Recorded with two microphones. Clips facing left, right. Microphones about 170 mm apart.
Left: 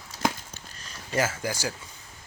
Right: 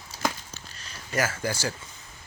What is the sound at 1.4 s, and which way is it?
Speech, 10° left (ahead or behind).